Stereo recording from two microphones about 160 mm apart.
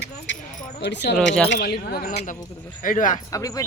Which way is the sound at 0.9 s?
90° left.